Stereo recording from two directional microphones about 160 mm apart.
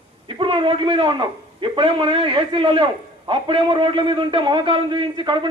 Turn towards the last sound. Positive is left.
turn(degrees=-30)  # may be behind; listen again after turning